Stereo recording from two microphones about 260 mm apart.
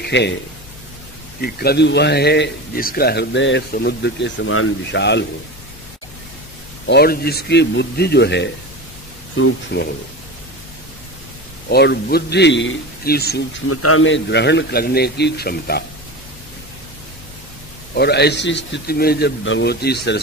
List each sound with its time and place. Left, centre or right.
0.0 s a man's voice: left
1.4 s a man's voice: left
6.9 s a man's voice: left
9.7 s a man's voice: left
11.7 s a man's voice: left
13.7 s a man's voice: left
17.9 s a man's voice: left